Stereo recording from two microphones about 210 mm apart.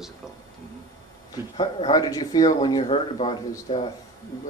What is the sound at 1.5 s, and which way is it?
A man's voice, 20° left (ahead or behind).